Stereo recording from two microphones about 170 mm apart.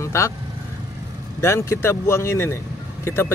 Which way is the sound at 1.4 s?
15° left (ahead or behind).